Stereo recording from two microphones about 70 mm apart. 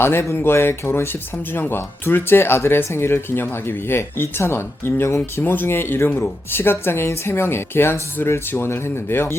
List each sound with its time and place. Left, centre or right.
0.0 s speech: left